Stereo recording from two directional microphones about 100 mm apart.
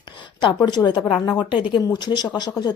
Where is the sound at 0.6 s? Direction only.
45° left (ahead or behind).